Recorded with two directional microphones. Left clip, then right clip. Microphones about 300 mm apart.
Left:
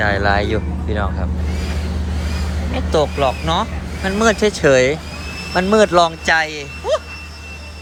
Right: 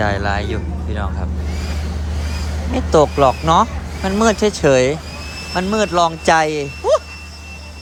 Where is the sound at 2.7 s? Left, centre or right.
Right.